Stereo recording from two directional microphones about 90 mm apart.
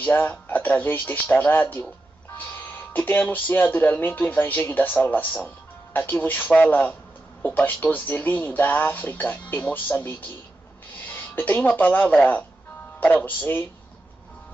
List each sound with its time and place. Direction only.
0.0 s speech: 20° left (ahead or behind)